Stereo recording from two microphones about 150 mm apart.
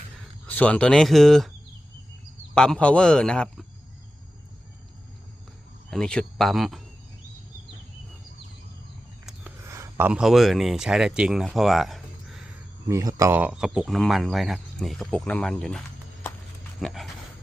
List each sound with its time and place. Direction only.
0.4 s speech: 10° left (ahead or behind)
2.6 s speech: 5° left (ahead or behind)
5.9 s speech: 5° left (ahead or behind)
9.6 s a sound: 20° right (ahead or behind)
10.1 s speech: 5° right (ahead or behind)
12.9 s speech: 20° right (ahead or behind); by 15.8 s 5° left (ahead or behind)
16.8 s speech: centre (ahead or behind)